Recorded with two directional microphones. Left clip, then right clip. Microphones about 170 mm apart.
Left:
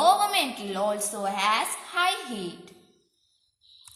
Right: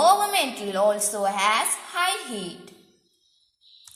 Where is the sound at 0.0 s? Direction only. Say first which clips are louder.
Right 2 dB; 35° right (ahead or behind).